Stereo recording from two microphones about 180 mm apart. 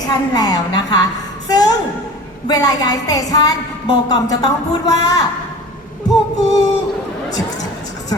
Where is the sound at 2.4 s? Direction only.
20° left (ahead or behind).